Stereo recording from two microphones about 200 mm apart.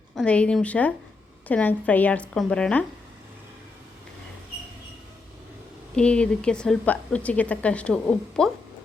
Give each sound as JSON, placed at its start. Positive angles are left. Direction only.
{"t": 0.2, "sound": "a woman's voice", "side_deg": 5}
{"t": 6.0, "sound": "a woman's voice", "side_deg": 5}